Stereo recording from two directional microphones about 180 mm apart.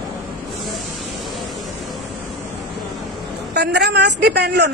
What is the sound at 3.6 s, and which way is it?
A woman's voice, 70° right (ahead or behind).